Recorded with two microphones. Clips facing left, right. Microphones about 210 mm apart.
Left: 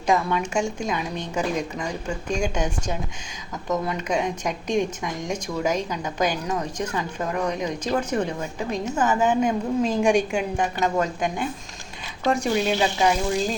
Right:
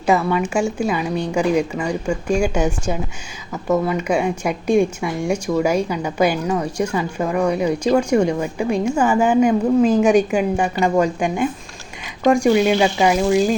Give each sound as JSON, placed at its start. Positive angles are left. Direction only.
{"t": 0.0, "sound": "a woman's voice", "side_deg": -5}
{"t": 12.5, "sound": "speech", "side_deg": -60}